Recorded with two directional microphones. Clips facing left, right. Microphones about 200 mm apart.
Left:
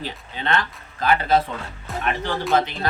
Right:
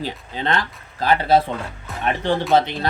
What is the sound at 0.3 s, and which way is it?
Speech, 35° right (ahead or behind).